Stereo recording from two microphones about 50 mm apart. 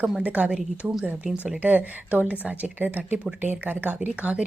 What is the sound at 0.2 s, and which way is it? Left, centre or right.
A woman's voice, right.